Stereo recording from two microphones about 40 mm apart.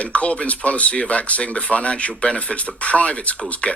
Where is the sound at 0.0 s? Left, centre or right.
Left.